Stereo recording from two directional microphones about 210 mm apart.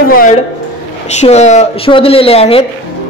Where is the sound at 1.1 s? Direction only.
30° left (ahead or behind).